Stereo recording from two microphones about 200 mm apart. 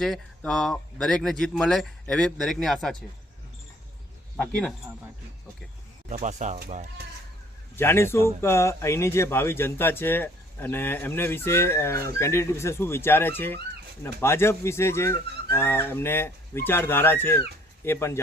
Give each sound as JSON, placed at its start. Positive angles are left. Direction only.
{"t": 0.0, "sound": "speech", "side_deg": 0}
{"t": 4.4, "sound": "speech", "side_deg": 5}
{"t": 6.1, "sound": "speech", "side_deg": -40}
{"t": 7.8, "sound": "speech", "side_deg": 10}